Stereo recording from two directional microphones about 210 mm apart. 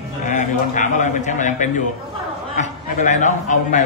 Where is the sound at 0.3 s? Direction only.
35° left (ahead or behind).